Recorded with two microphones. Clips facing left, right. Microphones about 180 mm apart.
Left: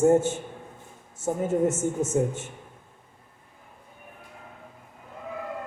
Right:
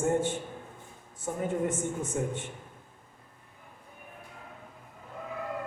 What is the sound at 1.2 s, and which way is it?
Speech, 25° left (ahead or behind).